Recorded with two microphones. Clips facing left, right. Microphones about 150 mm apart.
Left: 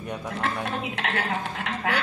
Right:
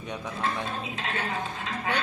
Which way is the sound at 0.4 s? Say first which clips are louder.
Left 2 dB; 70° left (ahead or behind).